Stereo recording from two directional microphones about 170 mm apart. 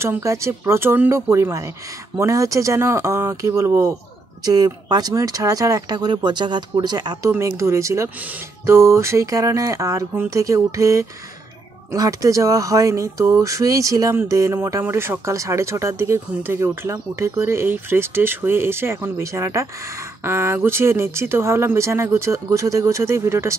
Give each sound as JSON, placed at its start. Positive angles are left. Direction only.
{"t": 0.0, "sound": "speech", "side_deg": -15}